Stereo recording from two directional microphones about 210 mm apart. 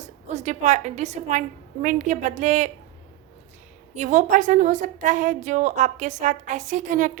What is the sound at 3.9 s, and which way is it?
A woman's voice, 35° right (ahead or behind).